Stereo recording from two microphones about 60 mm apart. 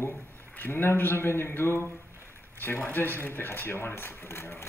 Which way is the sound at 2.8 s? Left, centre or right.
Left.